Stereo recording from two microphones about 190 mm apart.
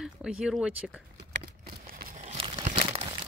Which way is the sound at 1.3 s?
50° right (ahead or behind).